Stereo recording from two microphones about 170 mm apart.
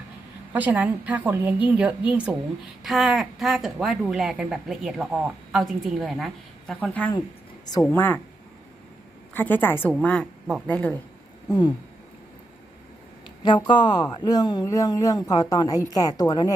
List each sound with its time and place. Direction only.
0.5 s a woman's voice: 10° right (ahead or behind); by 8.2 s 10° left (ahead or behind)
9.3 s a woman's voice: 10° left (ahead or behind)
13.7 s speech: 25° left (ahead or behind)